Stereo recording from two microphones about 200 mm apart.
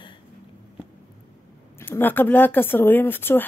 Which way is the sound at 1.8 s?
10° left (ahead or behind).